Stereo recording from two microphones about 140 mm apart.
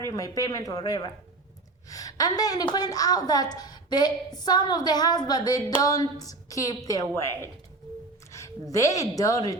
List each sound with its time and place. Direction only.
0.0 s a woman's voice: 25° left (ahead or behind)